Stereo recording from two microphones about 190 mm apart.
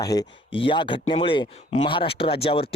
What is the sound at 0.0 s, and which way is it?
Speech, 20° left (ahead or behind).